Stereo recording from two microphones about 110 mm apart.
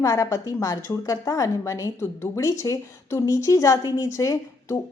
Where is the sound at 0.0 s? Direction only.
30° left (ahead or behind).